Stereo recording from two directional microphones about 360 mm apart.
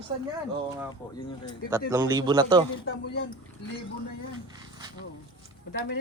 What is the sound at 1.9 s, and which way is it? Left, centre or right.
Speech, centre.